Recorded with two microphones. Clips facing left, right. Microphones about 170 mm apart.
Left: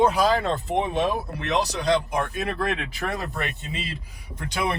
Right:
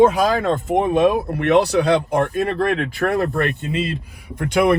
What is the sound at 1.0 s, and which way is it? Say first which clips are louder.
Speech: right 9 dB; 60° right (ahead or behind).